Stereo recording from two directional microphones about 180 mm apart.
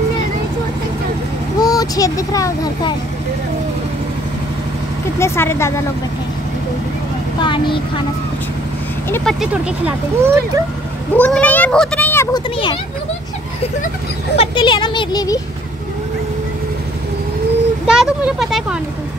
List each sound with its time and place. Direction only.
1.6 s speech: 20° left (ahead or behind)
5.2 s a child's voice: 15° left (ahead or behind)
7.3 s speech: 25° left (ahead or behind)
9.1 s speech: 5° left (ahead or behind); by 10.6 s 15° right (ahead or behind)
11.1 s a child's voice: 5° left (ahead or behind)
14.3 s speech: 30° left (ahead or behind)
17.8 s speech: 5° right (ahead or behind)